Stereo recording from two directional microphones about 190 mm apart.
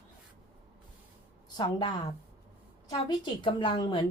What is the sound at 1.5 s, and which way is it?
A woman's voice, 25° left (ahead or behind).